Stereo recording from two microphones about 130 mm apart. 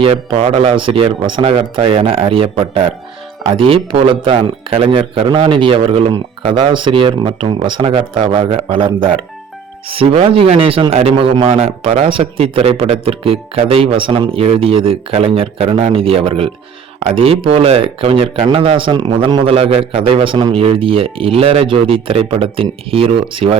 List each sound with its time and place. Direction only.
0.0 s a man's voice: 50° right (ahead or behind)